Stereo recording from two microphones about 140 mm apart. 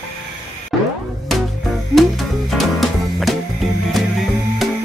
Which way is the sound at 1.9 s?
Centre (ahead or behind).